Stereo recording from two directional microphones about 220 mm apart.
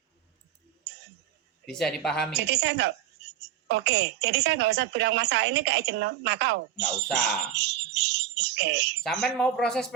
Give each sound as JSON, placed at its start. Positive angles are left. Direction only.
{"t": 1.7, "sound": "speech", "side_deg": 5}
{"t": 2.3, "sound": "a woman's voice", "side_deg": -50}
{"t": 9.2, "sound": "speech", "side_deg": 5}